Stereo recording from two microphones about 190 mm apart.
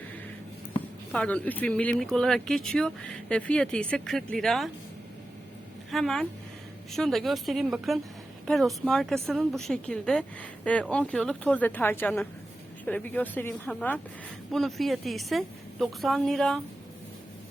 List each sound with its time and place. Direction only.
1.1 s a woman's voice: 5° left (ahead or behind)
5.9 s a woman's voice: centre (ahead or behind)